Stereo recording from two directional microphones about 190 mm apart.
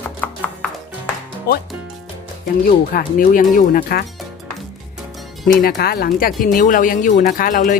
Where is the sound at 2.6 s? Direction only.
45° left (ahead or behind).